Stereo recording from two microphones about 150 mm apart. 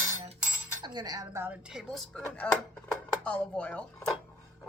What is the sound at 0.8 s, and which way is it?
Speech, 25° right (ahead or behind).